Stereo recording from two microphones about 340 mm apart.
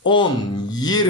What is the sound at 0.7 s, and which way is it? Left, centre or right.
Speech, centre.